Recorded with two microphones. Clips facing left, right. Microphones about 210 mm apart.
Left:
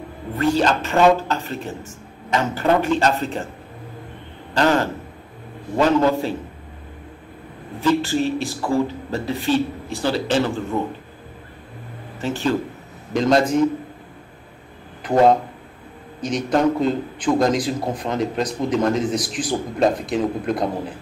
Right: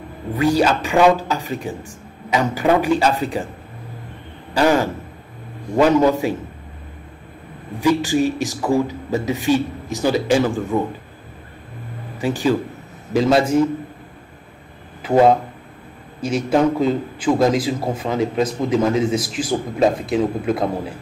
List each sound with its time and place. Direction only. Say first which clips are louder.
0.6 s speech: right 2 dB; 10° right (ahead or behind)
4.6 s speech: right 2 dB; 10° right (ahead or behind)
7.8 s speech: right 2 dB; 10° right (ahead or behind)
12.2 s a man's voice: right 3 dB; 10° right (ahead or behind)
15.0 s a man's voice: right 1 dB; 5° right (ahead or behind)